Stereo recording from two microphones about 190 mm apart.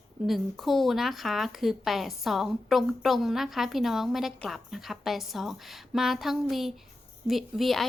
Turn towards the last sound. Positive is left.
turn(degrees=0)  # may be behind; listen again after turning